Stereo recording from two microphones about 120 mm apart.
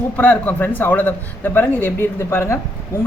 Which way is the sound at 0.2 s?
15° left (ahead or behind).